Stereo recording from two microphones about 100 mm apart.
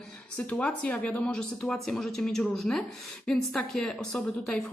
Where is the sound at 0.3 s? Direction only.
10° left (ahead or behind).